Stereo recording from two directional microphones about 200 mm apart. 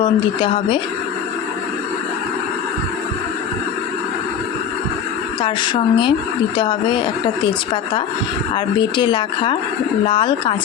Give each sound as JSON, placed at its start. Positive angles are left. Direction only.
{"t": 0.0, "sound": "speech", "side_deg": 25}
{"t": 5.4, "sound": "speech", "side_deg": 25}
{"t": 8.5, "sound": "speech", "side_deg": 25}